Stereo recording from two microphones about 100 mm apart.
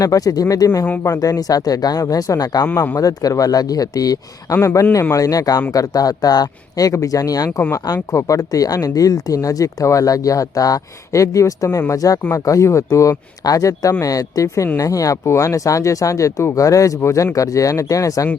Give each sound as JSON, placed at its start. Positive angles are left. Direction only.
{"t": 0.0, "sound": "speech", "side_deg": 35}